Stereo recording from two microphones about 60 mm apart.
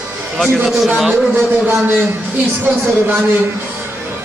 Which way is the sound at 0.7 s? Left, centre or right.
Centre.